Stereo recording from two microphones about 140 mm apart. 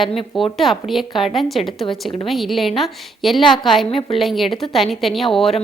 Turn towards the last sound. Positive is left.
turn(degrees=0)  # may be behind; listen again after turning